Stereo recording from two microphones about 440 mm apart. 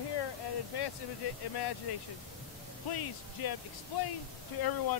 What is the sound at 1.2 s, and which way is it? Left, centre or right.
Speech, left.